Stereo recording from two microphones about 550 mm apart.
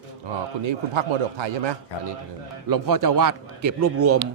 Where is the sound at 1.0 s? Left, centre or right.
Right.